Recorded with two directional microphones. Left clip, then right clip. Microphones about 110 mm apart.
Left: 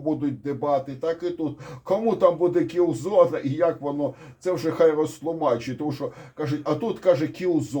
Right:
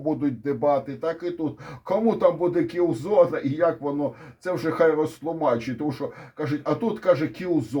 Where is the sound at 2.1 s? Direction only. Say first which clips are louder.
Left 1 dB; 25° right (ahead or behind).